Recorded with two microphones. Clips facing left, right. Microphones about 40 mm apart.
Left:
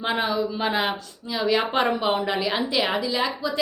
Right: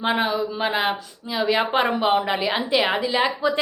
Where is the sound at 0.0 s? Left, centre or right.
Centre.